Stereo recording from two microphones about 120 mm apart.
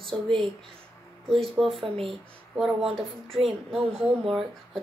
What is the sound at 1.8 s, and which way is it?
Speech, 50° right (ahead or behind).